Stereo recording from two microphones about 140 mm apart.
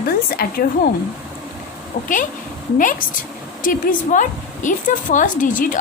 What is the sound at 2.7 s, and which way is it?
A woman's voice, 75° left (ahead or behind).